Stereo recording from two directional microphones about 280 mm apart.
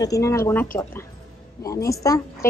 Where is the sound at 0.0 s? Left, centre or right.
Centre.